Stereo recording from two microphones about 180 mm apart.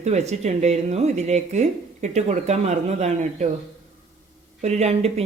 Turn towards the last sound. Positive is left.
turn(degrees=-35)  # may be behind; listen again after turning